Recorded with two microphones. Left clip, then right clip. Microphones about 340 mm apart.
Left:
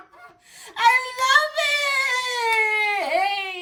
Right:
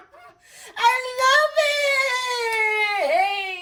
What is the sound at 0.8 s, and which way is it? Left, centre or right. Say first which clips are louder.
Child singing: left 1 dB; centre.